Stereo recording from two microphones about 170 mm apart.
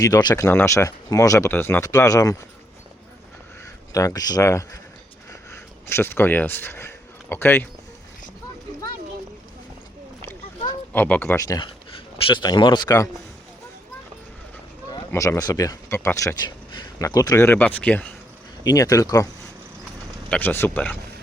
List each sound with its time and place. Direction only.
0.0 s speech: 20° left (ahead or behind)
3.9 s speech: 20° left (ahead or behind)
5.3 s a sound: 15° left (ahead or behind)
10.9 s speech: 10° left (ahead or behind)
15.1 s speech: 15° left (ahead or behind)
18.6 s speech: 20° left (ahead or behind)
20.3 s speech: 10° left (ahead or behind)